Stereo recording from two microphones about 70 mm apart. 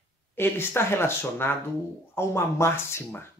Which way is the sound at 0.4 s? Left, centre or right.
Left.